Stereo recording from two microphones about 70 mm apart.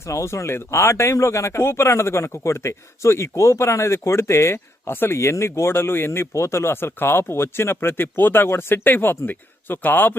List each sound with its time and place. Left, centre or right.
0.1 s speech: left